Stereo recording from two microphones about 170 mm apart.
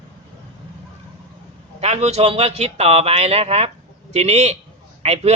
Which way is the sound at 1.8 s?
40° right (ahead or behind).